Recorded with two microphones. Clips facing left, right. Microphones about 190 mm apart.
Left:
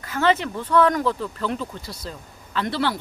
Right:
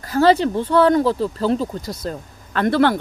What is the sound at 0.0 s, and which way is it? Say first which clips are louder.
Speech: right 6 dB; 35° right (ahead or behind).